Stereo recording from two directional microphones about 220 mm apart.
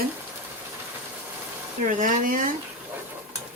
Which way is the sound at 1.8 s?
35° right (ahead or behind).